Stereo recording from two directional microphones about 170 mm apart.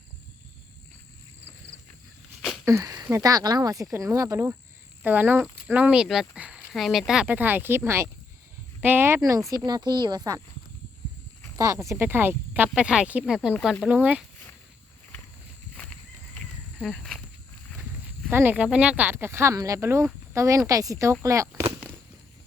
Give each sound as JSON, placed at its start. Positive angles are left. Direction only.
{"t": 2.6, "sound": "speech", "side_deg": -20}
{"t": 11.5, "sound": "speech", "side_deg": -20}
{"t": 15.7, "sound": "horse", "side_deg": 5}
{"t": 16.8, "sound": "speech", "side_deg": 5}
{"t": 18.3, "sound": "speech", "side_deg": -10}